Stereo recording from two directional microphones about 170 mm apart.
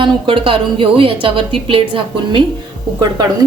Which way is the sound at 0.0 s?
30° right (ahead or behind).